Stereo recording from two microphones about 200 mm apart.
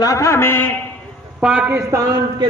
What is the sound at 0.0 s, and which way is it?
Speech, 15° left (ahead or behind).